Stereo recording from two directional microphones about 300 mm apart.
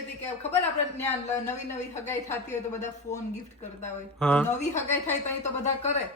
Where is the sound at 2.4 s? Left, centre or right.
Left.